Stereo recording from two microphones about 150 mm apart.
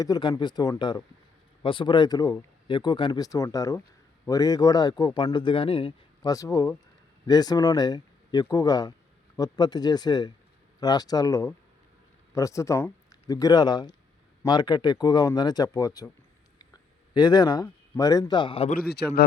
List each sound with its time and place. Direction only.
0.0 s speech: 30° left (ahead or behind)
6.2 s speech: 20° left (ahead or behind)
18.7 s a man's voice: 90° left